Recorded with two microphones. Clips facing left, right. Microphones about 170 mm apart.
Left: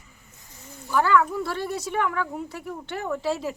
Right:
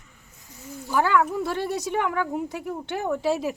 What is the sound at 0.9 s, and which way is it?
Speech, 15° right (ahead or behind).